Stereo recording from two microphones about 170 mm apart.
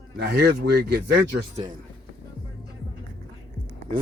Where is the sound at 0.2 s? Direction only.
75° right (ahead or behind).